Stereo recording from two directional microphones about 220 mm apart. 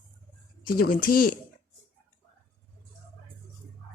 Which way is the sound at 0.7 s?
40° left (ahead or behind).